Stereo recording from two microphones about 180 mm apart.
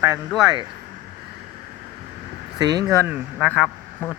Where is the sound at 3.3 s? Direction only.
Centre (ahead or behind).